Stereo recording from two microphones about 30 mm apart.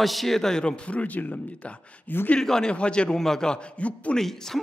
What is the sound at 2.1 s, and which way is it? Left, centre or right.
Speech, left.